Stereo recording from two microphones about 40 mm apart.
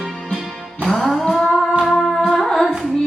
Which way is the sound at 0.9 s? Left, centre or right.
Centre.